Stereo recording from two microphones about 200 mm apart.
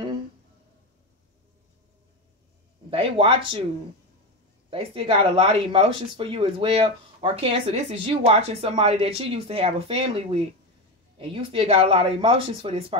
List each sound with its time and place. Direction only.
2.9 s speech: 25° right (ahead or behind)
4.6 s speech: 30° right (ahead or behind)